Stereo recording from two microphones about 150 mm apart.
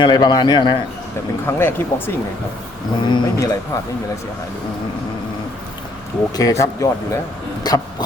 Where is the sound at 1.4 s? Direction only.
15° left (ahead or behind).